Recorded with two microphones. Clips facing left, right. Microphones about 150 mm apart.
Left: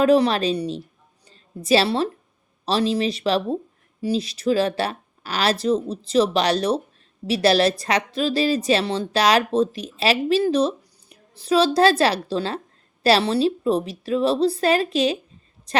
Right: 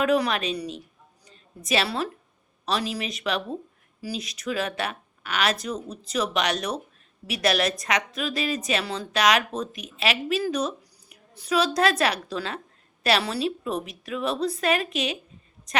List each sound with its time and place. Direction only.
0.0 s a woman's voice: 30° left (ahead or behind)